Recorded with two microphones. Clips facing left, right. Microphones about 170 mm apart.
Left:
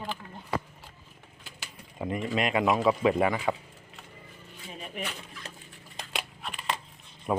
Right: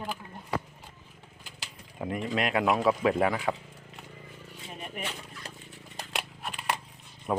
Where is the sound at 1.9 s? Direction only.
Centre (ahead or behind).